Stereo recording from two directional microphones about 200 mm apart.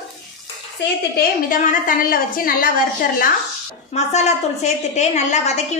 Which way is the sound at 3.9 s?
35° left (ahead or behind).